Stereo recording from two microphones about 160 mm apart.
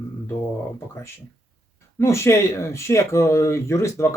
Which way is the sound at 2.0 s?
15° left (ahead or behind).